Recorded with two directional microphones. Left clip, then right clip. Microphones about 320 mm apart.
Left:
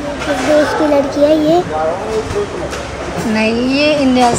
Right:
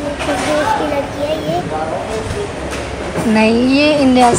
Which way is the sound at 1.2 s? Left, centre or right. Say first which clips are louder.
Left 10 dB; left.